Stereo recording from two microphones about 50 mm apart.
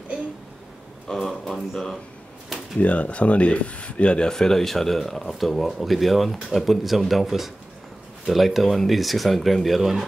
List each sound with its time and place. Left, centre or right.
1.1 s speech: centre
2.8 s speech: left
4.3 s speech: centre